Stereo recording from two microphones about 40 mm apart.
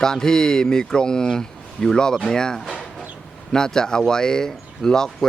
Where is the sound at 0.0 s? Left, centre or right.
Centre.